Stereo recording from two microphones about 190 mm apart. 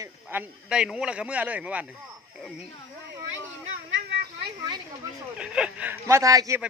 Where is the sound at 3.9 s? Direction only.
70° right (ahead or behind).